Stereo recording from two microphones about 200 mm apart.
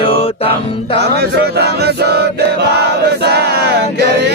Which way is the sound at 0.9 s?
55° right (ahead or behind).